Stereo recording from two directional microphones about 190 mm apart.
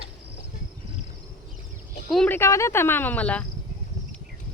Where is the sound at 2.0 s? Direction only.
5° left (ahead or behind).